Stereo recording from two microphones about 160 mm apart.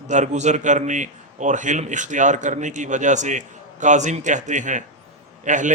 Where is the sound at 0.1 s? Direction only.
50° right (ahead or behind).